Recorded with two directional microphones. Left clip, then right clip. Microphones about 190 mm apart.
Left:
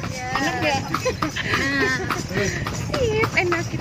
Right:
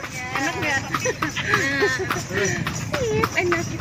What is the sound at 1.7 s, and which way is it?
Speech, 30° left (ahead or behind).